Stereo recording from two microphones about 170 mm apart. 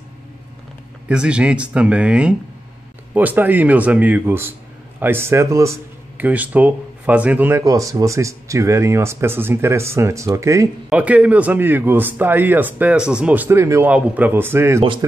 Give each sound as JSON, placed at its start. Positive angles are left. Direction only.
{"t": 1.0, "sound": "speech", "side_deg": -5}
{"t": 10.9, "sound": "speech", "side_deg": -10}